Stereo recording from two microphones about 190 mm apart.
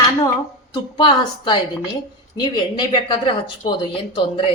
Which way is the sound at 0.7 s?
25° left (ahead or behind).